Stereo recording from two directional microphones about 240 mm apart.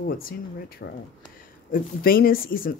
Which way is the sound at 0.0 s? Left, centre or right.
Left.